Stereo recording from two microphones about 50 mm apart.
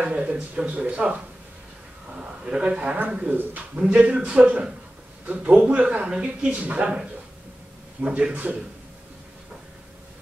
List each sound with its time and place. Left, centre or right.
0.0 s speech: right
3.1 s speech: right
8.2 s speech: right